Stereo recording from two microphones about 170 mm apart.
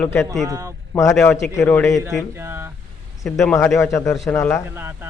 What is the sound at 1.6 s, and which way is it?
Speech, 15° left (ahead or behind).